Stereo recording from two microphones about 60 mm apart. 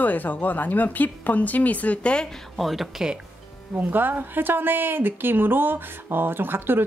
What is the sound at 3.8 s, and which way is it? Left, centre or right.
A woman's voice, right.